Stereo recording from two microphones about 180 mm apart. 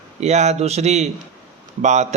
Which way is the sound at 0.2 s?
40° right (ahead or behind).